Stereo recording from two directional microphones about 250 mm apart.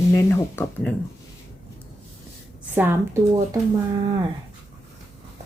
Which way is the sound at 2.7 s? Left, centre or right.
Centre.